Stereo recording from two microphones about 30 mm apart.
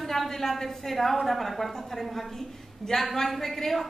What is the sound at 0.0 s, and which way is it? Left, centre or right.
A woman's voice, centre.